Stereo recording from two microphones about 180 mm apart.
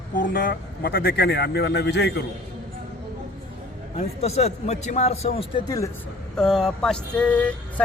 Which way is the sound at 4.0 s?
35° left (ahead or behind).